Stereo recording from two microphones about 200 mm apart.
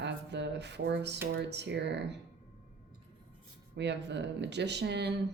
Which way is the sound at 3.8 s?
60° right (ahead or behind).